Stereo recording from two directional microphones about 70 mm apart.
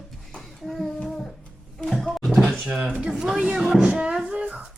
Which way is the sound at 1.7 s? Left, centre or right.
Centre.